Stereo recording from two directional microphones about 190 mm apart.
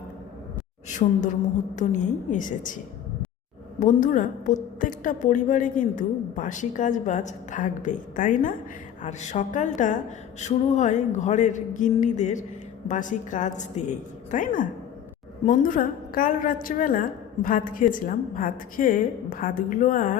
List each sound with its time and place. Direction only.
0.9 s speech: 40° left (ahead or behind)
3.8 s a woman's voice: 40° left (ahead or behind)